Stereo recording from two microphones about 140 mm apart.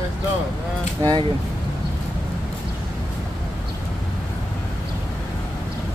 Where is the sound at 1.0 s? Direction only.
30° right (ahead or behind).